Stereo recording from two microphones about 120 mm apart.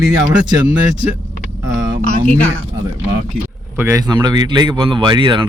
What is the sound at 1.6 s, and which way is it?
Speech, 35° right (ahead or behind).